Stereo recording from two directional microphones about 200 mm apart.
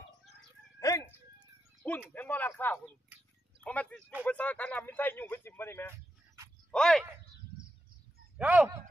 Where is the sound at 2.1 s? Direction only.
10° left (ahead or behind).